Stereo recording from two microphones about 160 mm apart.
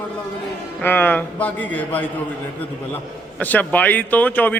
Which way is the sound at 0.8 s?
10° left (ahead or behind).